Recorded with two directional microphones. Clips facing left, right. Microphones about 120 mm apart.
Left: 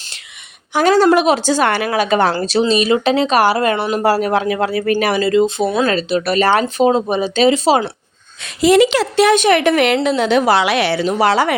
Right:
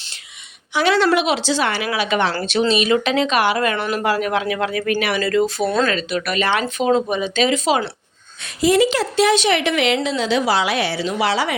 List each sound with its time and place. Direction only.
0.7 s a woman's voice: 45° left (ahead or behind)
5.2 s speech: 25° left (ahead or behind)
5.6 s speech: 10° left (ahead or behind)
5.9 s speech: 30° left (ahead or behind)
8.6 s a woman's voice: 90° left
11.0 s a woman's voice: 45° left (ahead or behind)